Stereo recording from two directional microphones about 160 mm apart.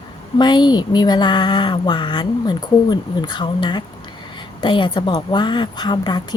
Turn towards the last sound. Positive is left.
turn(degrees=30)  # may be behind; listen again after turning